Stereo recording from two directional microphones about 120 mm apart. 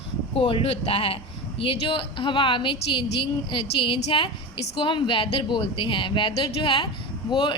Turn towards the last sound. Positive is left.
turn(degrees=40)  # may be behind; listen again after turning